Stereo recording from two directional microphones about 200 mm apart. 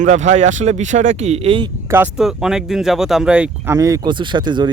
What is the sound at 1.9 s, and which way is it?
Speech, 5° right (ahead or behind).